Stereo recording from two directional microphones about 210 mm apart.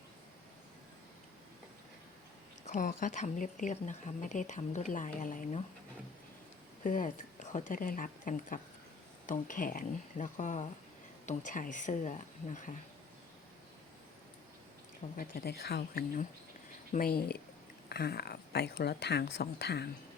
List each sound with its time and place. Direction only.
2.6 s speech: 35° left (ahead or behind)
6.8 s speech: 40° left (ahead or behind)
15.1 s speech: 45° left (ahead or behind)